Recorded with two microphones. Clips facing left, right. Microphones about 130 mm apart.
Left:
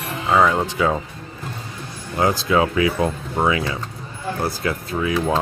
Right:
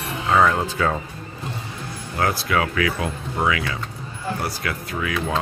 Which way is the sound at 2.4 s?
25° left (ahead or behind).